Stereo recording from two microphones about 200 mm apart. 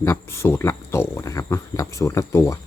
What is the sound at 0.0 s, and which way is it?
Speech, 15° left (ahead or behind).